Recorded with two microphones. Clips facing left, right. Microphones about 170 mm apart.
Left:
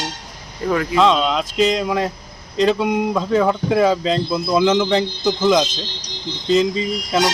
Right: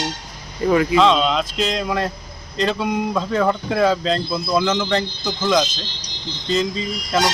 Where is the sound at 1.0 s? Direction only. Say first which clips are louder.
Even; 5° left (ahead or behind).